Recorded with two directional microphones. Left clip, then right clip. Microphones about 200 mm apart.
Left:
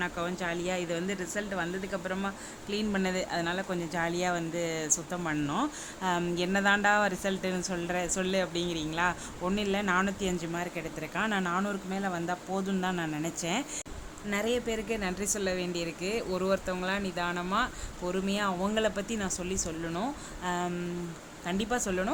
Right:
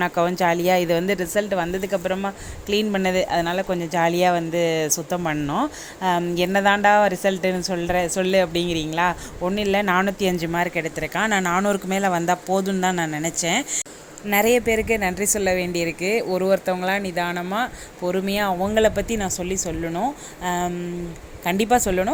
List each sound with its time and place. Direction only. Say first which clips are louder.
0.0 s a woman's voice: right 13 dB; 25° right (ahead or behind)
14.3 s a woman's voice: right 12 dB; 25° right (ahead or behind)